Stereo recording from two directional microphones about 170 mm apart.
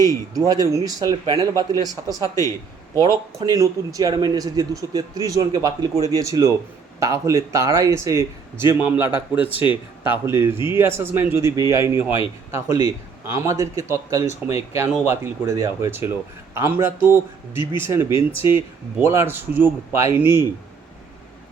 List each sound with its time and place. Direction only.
0.0 s speech: 20° right (ahead or behind)